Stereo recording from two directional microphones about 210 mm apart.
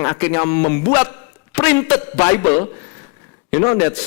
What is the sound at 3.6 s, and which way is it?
Speech, 25° left (ahead or behind).